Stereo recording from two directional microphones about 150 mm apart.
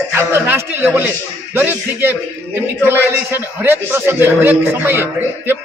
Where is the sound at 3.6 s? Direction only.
15° right (ahead or behind).